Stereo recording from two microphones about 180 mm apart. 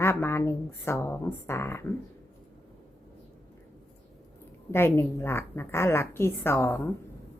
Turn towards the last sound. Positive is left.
turn(degrees=15)  # may be behind; listen again after turning